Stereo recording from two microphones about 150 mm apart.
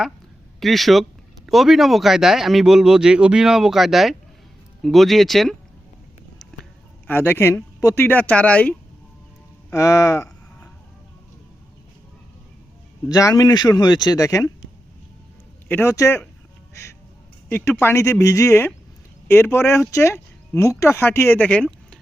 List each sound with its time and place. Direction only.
0.6 s speech: centre (ahead or behind)
7.1 s speech: 15° left (ahead or behind)
9.7 s speech: 20° left (ahead or behind)
13.1 s speech: 25° left (ahead or behind)
15.7 s speech: 20° left (ahead or behind)
17.5 s speech: 15° left (ahead or behind)